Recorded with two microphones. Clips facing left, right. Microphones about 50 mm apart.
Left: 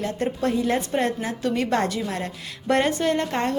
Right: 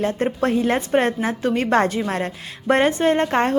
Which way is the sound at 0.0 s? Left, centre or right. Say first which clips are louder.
Right 4 dB; right.